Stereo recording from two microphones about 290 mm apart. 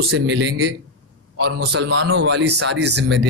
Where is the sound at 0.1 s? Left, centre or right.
Right.